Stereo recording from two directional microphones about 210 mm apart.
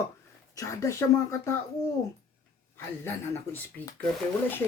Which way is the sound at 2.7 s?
10° left (ahead or behind).